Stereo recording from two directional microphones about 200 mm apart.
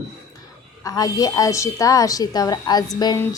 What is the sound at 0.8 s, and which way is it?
A woman's voice, 20° left (ahead or behind).